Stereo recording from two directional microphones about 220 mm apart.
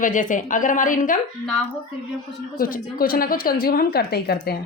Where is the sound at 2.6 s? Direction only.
40° left (ahead or behind).